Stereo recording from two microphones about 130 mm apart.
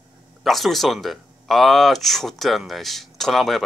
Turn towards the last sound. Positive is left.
turn(degrees=0)  # may be behind; listen again after turning